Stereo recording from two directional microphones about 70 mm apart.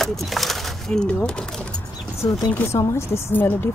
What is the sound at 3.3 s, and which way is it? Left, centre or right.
Speech, left.